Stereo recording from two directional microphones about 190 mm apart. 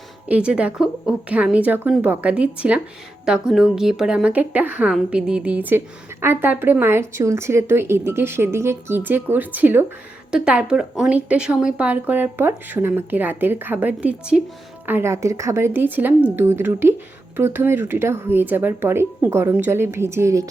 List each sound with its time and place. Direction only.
0.3 s a woman's voice: 5° right (ahead or behind)